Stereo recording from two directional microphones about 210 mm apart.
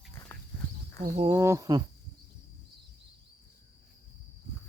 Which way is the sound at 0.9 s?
35° right (ahead or behind).